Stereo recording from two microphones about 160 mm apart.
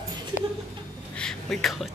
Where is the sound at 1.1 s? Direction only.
5° left (ahead or behind).